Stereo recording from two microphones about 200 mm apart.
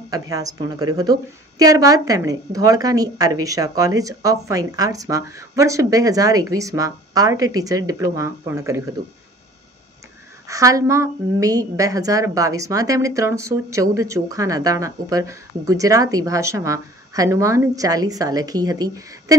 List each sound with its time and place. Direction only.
0.1 s a woman's voice: 15° right (ahead or behind)
10.5 s a woman's voice: 15° right (ahead or behind)